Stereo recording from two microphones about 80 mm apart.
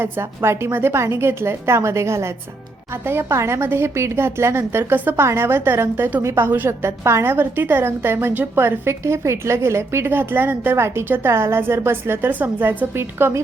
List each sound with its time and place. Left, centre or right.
0.0 s a woman's voice: right